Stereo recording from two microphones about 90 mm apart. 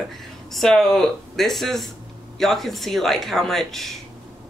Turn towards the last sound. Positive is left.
turn(degrees=5)  # may be behind; listen again after turning